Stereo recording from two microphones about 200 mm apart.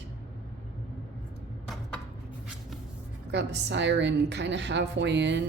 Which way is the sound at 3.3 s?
60° right (ahead or behind).